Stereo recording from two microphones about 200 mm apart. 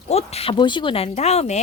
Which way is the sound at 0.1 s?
30° left (ahead or behind).